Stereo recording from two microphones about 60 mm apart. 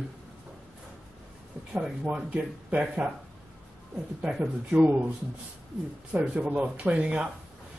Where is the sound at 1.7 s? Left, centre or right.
Centre.